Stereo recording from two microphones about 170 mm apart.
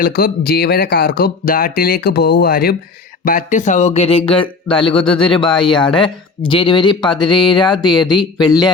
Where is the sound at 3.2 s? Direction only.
50° left (ahead or behind).